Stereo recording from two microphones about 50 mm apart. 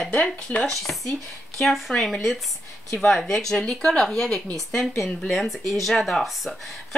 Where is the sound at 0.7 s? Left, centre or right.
Centre.